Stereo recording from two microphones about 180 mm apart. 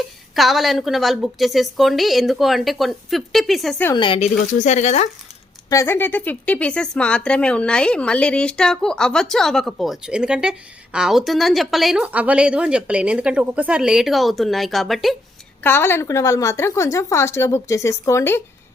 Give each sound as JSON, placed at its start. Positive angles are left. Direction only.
{"t": 0.3, "sound": "a woman's voice", "side_deg": 0}
{"t": 3.9, "sound": "speech", "side_deg": 30}
{"t": 4.6, "sound": "speech", "side_deg": 40}
{"t": 5.6, "sound": "a woman's voice", "side_deg": 15}
{"t": 15.6, "sound": "a woman's voice", "side_deg": 10}